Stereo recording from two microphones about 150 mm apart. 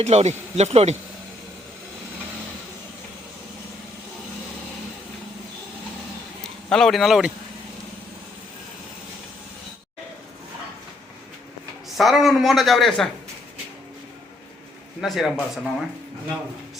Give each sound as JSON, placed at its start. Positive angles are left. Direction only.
{"t": 0.0, "sound": "speech", "side_deg": -45}
{"t": 6.7, "sound": "a woman's voice", "side_deg": 5}
{"t": 11.9, "sound": "a woman's voice", "side_deg": 0}
{"t": 15.0, "sound": "a woman's voice", "side_deg": 0}